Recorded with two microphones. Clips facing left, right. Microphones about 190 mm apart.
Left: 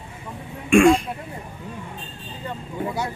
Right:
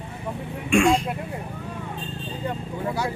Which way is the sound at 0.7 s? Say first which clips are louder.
Left 5 dB; 55° left (ahead or behind).